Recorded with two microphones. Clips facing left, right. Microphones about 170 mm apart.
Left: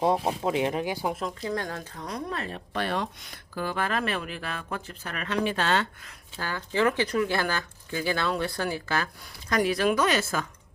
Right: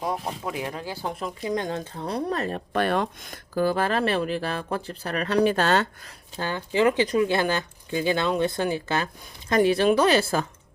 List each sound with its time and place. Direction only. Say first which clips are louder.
0.0 s speech: left 5 dB; 25° left (ahead or behind)
1.4 s speech: right 4 dB; 15° right (ahead or behind); by 5.9 s 40° right (ahead or behind)
6.4 s speech: right 4 dB; 25° right (ahead or behind)